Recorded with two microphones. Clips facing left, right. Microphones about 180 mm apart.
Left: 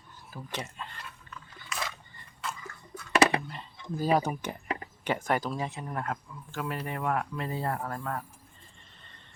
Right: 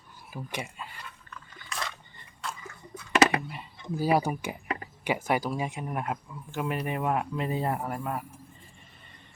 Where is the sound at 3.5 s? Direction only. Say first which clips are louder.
Right 2 dB; 10° right (ahead or behind).